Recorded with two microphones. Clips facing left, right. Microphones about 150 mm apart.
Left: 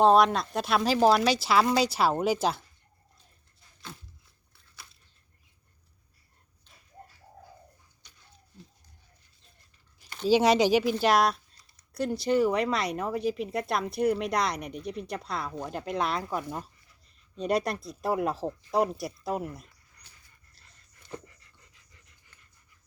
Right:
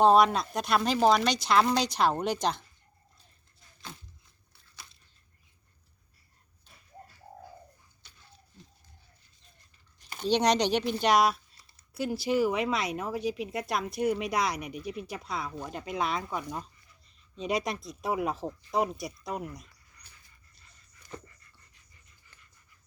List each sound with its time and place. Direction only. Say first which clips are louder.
0.0 s speech: left 1 dB; centre (ahead or behind)
10.2 s speech: left 4 dB; 5° left (ahead or behind)
21.7 s pant: left 3 dB; 90° left